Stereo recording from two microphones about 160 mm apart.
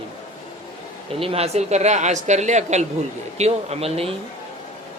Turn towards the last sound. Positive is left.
turn(degrees=-40)  # may be behind; listen again after turning